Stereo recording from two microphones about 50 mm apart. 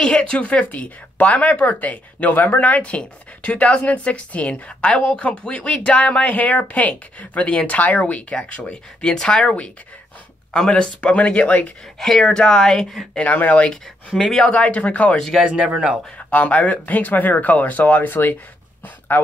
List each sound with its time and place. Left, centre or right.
0.0 s speech: centre
9.0 s speech: centre
10.7 s speech: left
12.0 s speech: centre
13.2 s speech: left
14.1 s speech: centre
14.5 s speech: left
15.4 s speech: centre
16.3 s speech: left